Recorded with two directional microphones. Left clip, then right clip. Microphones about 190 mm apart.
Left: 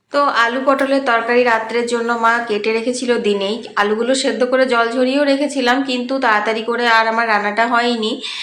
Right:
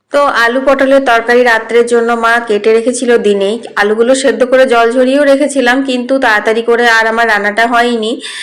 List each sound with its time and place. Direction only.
0.1 s a woman's voice: 20° right (ahead or behind)